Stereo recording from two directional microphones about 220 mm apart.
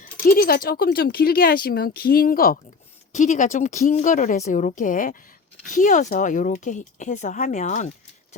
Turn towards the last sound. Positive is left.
turn(degrees=35)  # may be behind; listen again after turning